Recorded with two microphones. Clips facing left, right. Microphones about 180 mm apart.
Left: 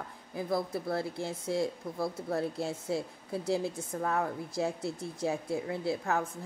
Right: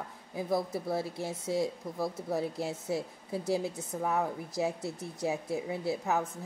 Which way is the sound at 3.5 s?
5° right (ahead or behind).